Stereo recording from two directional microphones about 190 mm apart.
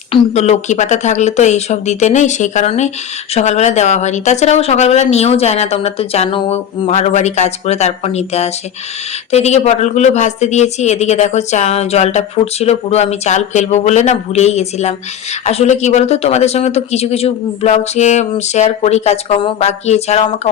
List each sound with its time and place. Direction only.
0.1 s speech: 35° left (ahead or behind)